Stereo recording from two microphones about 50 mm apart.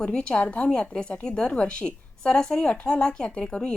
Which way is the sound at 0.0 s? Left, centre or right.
Centre.